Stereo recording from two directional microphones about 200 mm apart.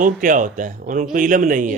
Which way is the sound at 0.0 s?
40° right (ahead or behind).